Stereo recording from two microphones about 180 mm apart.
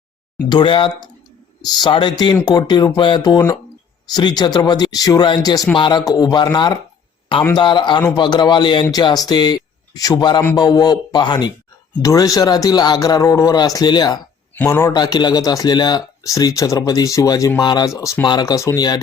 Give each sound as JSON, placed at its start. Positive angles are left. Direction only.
{"t": 0.4, "sound": "speech", "side_deg": 25}
{"t": 14.5, "sound": "speech", "side_deg": 15}